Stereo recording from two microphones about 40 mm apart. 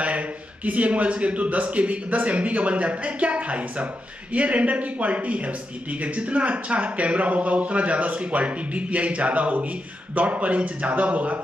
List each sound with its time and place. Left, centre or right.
0.0 s a man's voice: right